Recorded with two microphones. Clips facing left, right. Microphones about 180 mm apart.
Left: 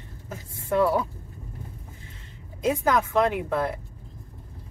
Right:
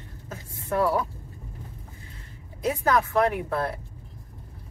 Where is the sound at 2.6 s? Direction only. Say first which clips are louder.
Left 1 dB; 15° left (ahead or behind).